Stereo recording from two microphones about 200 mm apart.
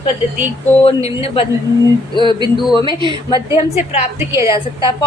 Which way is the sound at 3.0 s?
20° right (ahead or behind).